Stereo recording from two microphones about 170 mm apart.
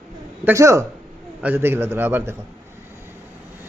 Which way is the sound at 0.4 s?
15° right (ahead or behind).